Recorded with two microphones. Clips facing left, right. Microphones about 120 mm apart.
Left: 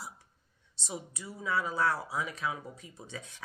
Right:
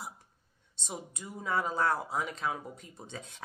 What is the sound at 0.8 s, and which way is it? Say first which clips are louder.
Speech: left 1 dB; 50° right (ahead or behind).